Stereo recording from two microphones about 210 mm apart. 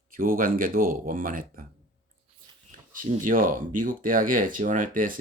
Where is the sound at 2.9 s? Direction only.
40° right (ahead or behind).